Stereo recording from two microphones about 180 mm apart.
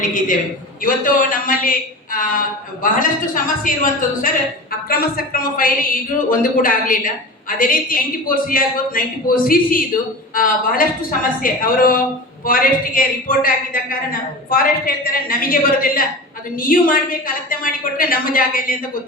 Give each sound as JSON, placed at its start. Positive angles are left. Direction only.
{"t": 0.0, "sound": "a man's voice", "side_deg": 45}
{"t": 4.9, "sound": "speech", "side_deg": 55}